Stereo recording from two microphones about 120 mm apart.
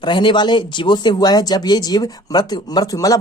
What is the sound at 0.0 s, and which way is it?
Speech, 40° left (ahead or behind).